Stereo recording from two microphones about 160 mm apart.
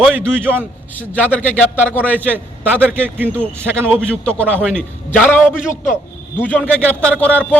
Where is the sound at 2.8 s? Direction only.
10° right (ahead or behind).